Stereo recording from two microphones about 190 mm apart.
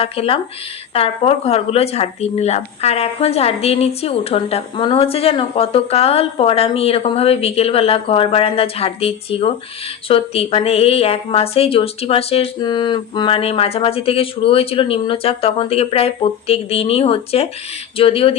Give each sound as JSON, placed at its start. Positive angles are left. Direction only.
{"t": 0.0, "sound": "speech", "side_deg": 30}